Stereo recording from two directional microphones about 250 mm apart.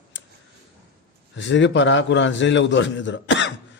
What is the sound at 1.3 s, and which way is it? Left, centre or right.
Speech, left.